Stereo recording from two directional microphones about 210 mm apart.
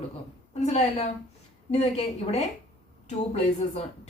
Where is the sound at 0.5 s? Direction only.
30° left (ahead or behind).